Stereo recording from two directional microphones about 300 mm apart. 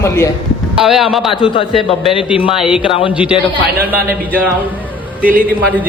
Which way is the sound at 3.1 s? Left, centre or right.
Centre.